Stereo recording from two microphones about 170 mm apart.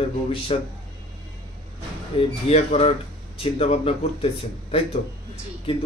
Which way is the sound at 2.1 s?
30° left (ahead or behind).